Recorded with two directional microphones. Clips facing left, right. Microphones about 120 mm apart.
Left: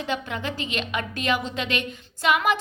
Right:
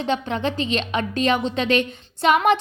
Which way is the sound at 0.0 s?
30° right (ahead or behind).